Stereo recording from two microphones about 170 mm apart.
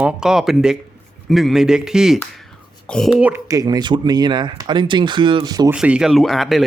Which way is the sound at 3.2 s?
15° right (ahead or behind).